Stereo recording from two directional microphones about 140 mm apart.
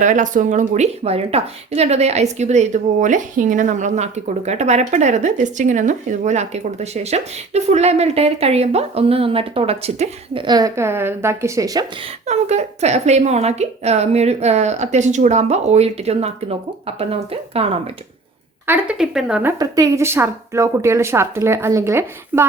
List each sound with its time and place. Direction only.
0.0 s a woman's voice: 65° right (ahead or behind); by 10.4 s 45° right (ahead or behind)
10.4 s speech: 30° right (ahead or behind)
12.2 s a woman's voice: 50° right (ahead or behind)
18.6 s a woman's voice: 15° right (ahead or behind)
19.5 s speech: 25° right (ahead or behind)